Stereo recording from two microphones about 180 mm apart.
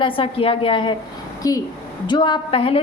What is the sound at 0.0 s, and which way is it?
A woman's voice, 30° left (ahead or behind).